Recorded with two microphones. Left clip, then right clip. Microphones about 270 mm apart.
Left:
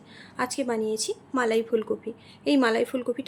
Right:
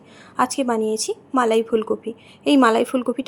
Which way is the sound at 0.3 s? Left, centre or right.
Centre.